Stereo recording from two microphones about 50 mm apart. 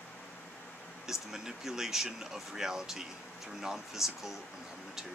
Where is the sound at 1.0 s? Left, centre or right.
Centre.